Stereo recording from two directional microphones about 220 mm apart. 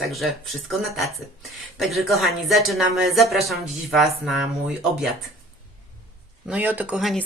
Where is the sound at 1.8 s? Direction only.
Centre (ahead or behind).